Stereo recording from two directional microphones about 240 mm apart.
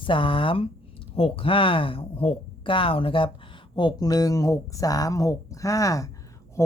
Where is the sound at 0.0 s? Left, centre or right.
Left.